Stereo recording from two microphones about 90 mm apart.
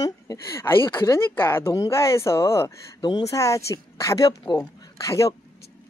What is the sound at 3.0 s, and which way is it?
Speech, 50° left (ahead or behind).